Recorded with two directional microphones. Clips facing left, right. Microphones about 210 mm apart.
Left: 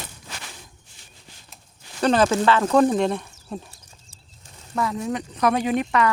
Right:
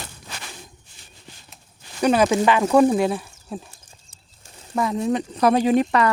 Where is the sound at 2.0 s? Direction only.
10° right (ahead or behind).